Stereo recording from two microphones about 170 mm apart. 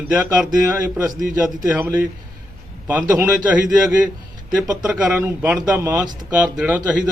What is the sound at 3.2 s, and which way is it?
Speech, 10° right (ahead or behind).